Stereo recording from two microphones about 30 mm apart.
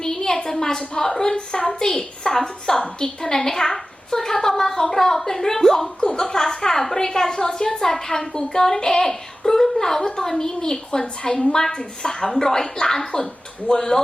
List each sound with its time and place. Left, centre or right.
0.0 s a sound: centre
0.5 s a woman's voice: centre
13.7 s a woman's voice: left